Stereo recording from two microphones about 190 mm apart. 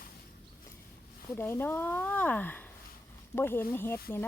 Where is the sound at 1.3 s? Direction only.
10° left (ahead or behind).